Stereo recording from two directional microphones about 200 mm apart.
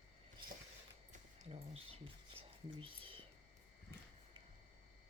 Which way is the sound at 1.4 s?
30° right (ahead or behind).